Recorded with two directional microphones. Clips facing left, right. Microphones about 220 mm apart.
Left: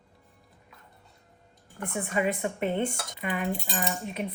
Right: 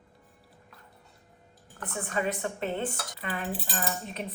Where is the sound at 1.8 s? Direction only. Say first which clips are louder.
Left 3 dB; 10° left (ahead or behind).